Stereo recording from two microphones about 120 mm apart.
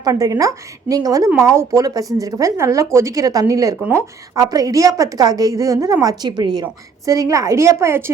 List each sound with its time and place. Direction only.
0.0 s a woman's voice: 30° right (ahead or behind)
4.4 s a woman's voice: 30° right (ahead or behind)